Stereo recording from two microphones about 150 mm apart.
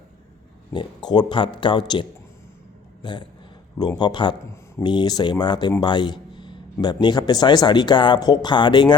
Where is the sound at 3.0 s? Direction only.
30° left (ahead or behind).